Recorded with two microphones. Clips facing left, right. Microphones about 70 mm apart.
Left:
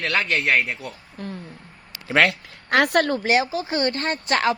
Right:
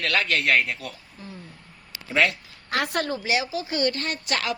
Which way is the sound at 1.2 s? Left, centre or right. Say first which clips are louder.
Left 9 dB; left.